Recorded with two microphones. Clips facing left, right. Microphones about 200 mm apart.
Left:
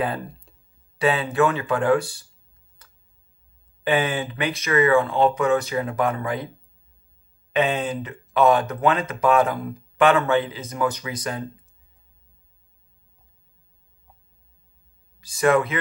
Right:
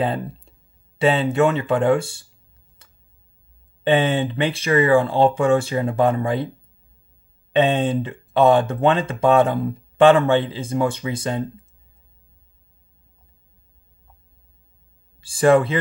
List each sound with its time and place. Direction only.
0.0 s speech: 25° right (ahead or behind)
3.8 s speech: 25° right (ahead or behind)
7.5 s speech: 30° right (ahead or behind)
15.1 s speech: 30° right (ahead or behind)